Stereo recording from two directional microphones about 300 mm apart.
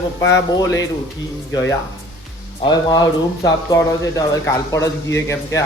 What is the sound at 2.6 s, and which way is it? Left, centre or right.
Speech, centre.